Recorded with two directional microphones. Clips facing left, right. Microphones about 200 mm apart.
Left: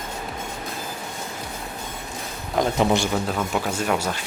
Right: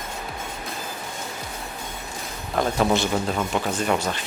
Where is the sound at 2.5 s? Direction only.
15° left (ahead or behind).